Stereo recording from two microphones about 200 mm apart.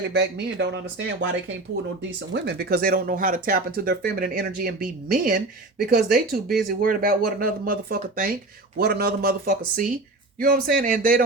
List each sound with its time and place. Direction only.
0.1 s speech: 55° right (ahead or behind)
2.3 s speech: 60° right (ahead or behind)